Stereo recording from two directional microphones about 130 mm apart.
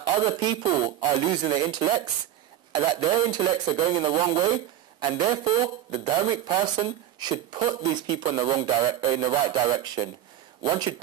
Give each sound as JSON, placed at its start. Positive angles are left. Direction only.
{"t": 0.0, "sound": "a man's voice", "side_deg": -35}